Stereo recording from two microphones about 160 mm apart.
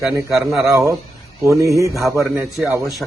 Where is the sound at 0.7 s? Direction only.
20° right (ahead or behind).